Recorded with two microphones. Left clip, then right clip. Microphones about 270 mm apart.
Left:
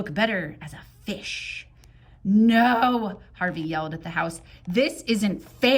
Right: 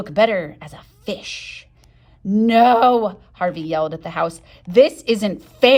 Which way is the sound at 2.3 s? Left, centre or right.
Centre.